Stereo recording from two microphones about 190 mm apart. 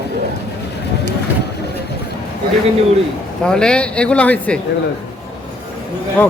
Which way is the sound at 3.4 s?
5° left (ahead or behind).